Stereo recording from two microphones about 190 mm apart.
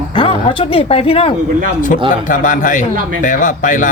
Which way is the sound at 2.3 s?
45° left (ahead or behind).